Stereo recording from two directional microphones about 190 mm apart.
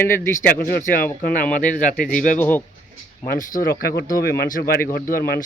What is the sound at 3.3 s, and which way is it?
Speech, 45° left (ahead or behind).